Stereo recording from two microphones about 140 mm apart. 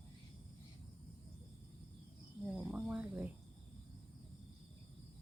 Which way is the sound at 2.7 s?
10° right (ahead or behind).